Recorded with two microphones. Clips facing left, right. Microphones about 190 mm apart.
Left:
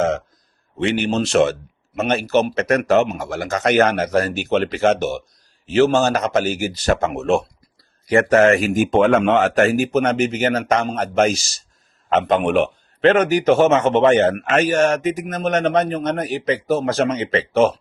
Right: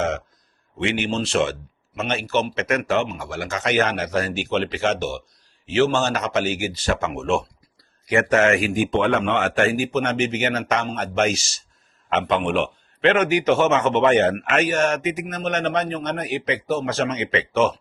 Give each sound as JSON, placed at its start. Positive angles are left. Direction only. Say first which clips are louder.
{"t": 0.8, "sound": "a man's voice", "louder": "left 4 dB", "side_deg": 40}